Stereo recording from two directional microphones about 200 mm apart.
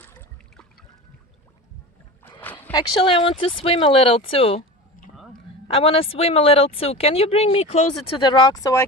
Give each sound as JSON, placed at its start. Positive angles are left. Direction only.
{"t": 2.2, "sound": "rowboat", "side_deg": 10}
{"t": 2.7, "sound": "speech", "side_deg": 25}